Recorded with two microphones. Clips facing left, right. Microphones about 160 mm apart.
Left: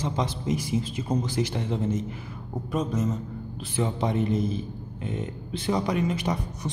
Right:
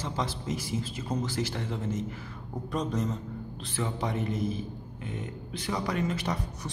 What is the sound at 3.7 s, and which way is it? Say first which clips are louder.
A man's voice: left 5 dB; 20° left (ahead or behind).